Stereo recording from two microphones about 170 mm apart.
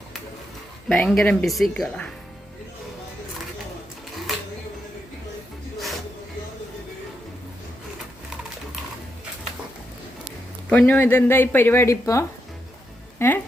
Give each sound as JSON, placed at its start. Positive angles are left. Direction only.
{"t": 0.9, "sound": "speech", "side_deg": 5}
{"t": 10.7, "sound": "speech", "side_deg": 10}